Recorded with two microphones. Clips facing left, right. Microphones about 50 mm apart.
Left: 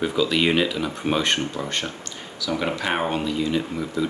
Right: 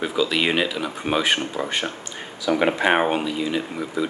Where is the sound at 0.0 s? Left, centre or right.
Centre.